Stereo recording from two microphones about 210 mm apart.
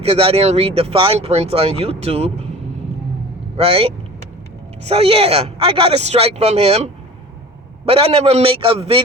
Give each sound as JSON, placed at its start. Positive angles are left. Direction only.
{"t": 0.0, "sound": "speech", "side_deg": -30}
{"t": 3.6, "sound": "speech", "side_deg": -25}